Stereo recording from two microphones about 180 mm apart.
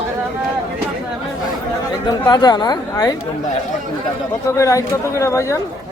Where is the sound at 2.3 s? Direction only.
25° left (ahead or behind).